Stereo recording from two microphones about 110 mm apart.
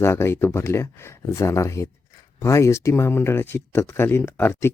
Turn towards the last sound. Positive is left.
turn(degrees=20)  # may be behind; listen again after turning